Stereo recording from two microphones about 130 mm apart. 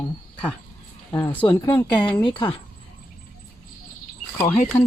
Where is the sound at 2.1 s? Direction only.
40° left (ahead or behind).